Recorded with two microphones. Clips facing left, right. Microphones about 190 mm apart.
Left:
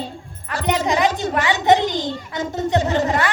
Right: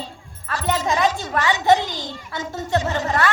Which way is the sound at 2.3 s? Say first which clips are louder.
Left 3 dB; 20° left (ahead or behind).